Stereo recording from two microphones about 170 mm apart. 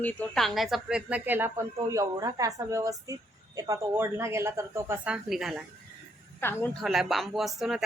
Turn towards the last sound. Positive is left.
turn(degrees=0)  # may be behind; listen again after turning